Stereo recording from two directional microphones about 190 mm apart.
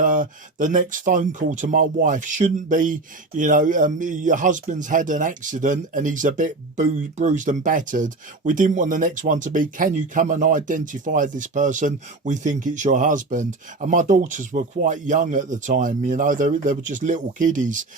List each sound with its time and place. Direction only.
0.0 s speech: 45° right (ahead or behind)